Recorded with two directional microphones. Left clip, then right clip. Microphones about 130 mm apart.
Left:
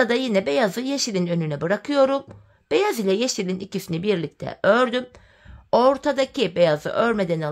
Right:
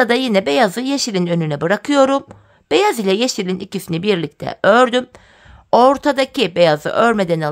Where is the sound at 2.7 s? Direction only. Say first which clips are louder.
Right 6 dB; 30° right (ahead or behind).